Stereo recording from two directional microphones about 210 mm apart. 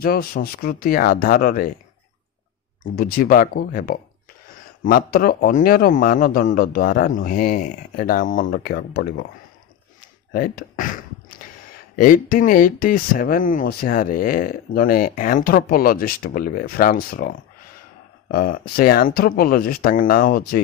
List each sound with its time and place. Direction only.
0.0 s speech: 45° left (ahead or behind)
2.8 s speech: 45° left (ahead or behind)
10.3 s speech: 45° left (ahead or behind)